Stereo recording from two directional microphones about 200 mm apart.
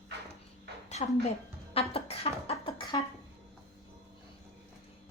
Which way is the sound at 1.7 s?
30° left (ahead or behind).